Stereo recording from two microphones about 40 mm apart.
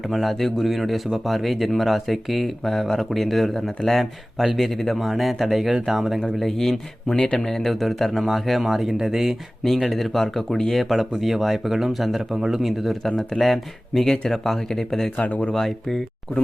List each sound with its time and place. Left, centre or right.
0.1 s speech: centre
6.4 s speech: centre
9.6 s speech: centre
15.3 s speech: left
15.5 s speech: centre